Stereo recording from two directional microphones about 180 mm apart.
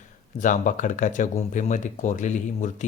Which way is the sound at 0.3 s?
45° left (ahead or behind).